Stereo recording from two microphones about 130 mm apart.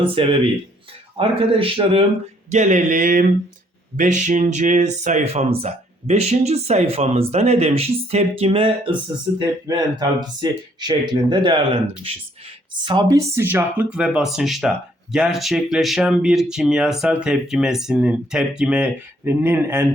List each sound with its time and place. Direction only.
0.0 s speech: 45° right (ahead or behind)
2.5 s speech: 70° right (ahead or behind)
3.9 s speech: 70° right (ahead or behind); by 8.9 s 45° right (ahead or behind)
10.0 s speech: 35° right (ahead or behind); by 19.9 s 15° right (ahead or behind)